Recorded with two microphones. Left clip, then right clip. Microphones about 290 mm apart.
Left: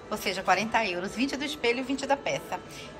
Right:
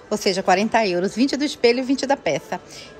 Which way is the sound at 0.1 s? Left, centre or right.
Centre.